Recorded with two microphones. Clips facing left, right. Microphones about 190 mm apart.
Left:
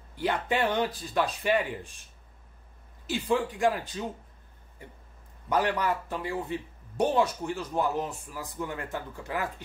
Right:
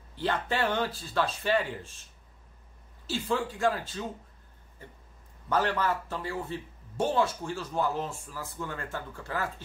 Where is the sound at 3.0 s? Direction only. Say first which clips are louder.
Left 3 dB; 15° left (ahead or behind).